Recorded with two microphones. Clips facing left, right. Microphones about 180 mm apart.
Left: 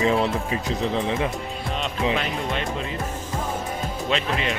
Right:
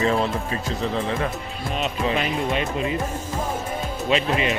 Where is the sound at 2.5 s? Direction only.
10° right (ahead or behind).